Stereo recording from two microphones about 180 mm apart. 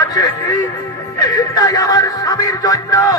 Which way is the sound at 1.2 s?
20° left (ahead or behind).